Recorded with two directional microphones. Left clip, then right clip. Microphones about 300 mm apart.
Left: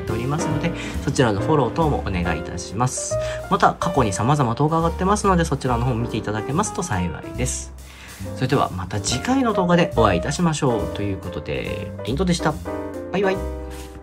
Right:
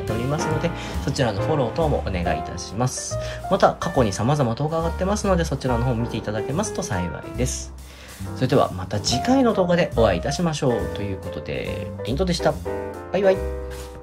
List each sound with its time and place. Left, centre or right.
0.3 s speech: centre